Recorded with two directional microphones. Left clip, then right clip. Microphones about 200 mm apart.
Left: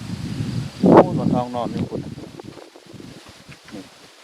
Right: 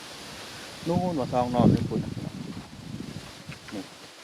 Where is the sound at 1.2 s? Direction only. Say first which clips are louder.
Left 1 dB; 5° right (ahead or behind).